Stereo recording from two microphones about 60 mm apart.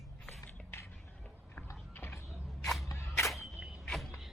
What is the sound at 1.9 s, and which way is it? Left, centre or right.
Mechanisms, left.